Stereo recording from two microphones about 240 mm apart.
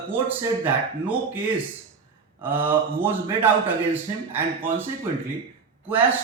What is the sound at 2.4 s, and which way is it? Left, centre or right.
A man's voice, centre.